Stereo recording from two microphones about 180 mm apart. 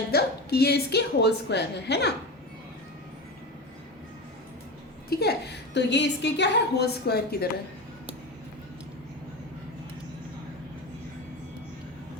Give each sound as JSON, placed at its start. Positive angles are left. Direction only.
{"t": 0.1, "sound": "a woman's voice", "side_deg": 60}
{"t": 5.0, "sound": "a woman's voice", "side_deg": 60}